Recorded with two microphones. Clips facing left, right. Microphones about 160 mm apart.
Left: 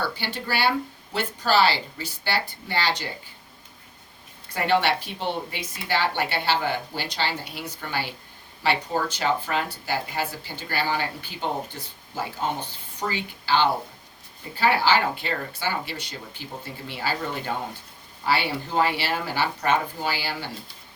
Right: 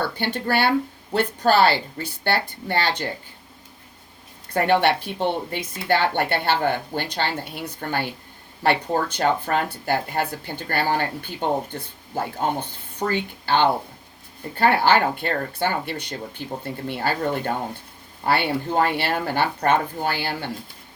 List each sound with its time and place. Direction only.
0.0 s a woman's voice: 55° right (ahead or behind)
4.5 s a woman's voice: 55° right (ahead or behind)